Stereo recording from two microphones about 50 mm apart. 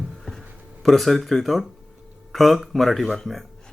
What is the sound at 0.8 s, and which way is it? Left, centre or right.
Speech, centre.